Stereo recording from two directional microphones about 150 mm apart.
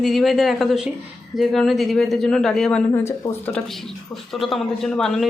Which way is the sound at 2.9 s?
15° left (ahead or behind).